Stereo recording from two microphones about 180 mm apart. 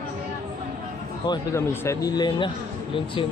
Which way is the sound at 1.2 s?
20° left (ahead or behind).